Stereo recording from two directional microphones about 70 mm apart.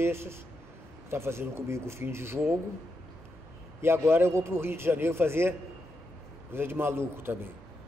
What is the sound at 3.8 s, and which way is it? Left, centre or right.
Speech, right.